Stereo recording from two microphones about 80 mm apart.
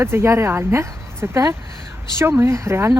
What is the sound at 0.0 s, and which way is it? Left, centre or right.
Speech, right.